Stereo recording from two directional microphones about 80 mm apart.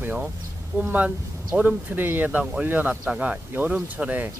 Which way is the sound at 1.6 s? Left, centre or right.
Right.